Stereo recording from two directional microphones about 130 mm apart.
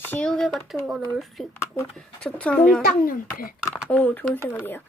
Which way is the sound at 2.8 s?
90° left.